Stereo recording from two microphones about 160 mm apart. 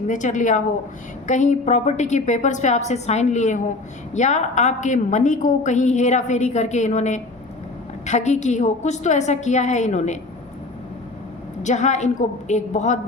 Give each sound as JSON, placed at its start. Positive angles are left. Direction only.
{"t": 0.1, "sound": "a woman's voice", "side_deg": 50}
{"t": 11.6, "sound": "a woman's voice", "side_deg": 45}